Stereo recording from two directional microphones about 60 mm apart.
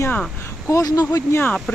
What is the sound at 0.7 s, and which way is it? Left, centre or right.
Speech, left.